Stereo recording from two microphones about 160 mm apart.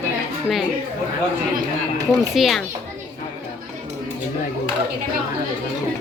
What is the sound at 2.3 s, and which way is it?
Speech, centre (ahead or behind).